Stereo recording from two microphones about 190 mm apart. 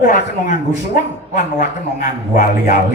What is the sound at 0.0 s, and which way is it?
Speech, 40° left (ahead or behind).